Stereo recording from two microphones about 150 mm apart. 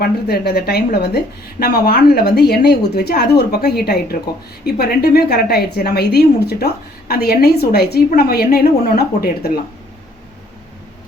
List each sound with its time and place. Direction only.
0.0 s a woman's voice: 90° left